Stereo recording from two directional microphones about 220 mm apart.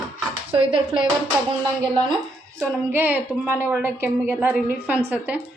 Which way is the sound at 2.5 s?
10° right (ahead or behind).